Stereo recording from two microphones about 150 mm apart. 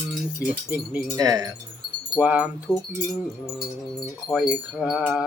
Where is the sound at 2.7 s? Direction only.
5° left (ahead or behind).